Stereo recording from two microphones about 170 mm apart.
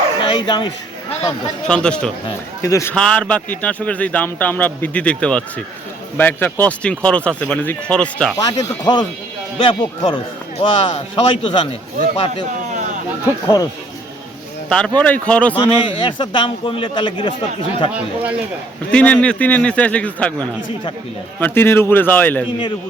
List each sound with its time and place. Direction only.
0.2 s speech: 25° left (ahead or behind)
1.6 s speech: 5° left (ahead or behind)
2.6 s speech: 15° left (ahead or behind)
2.9 s speech: 5° left (ahead or behind)
8.4 s a man's voice: 25° left (ahead or behind)
14.7 s speech: 5° left (ahead or behind)
15.5 s a man's voice: 30° left (ahead or behind)
17.9 s speech: 10° right (ahead or behind)
18.9 s speech: 10° left (ahead or behind)